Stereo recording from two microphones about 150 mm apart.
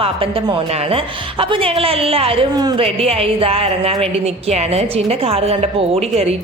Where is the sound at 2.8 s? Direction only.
40° right (ahead or behind).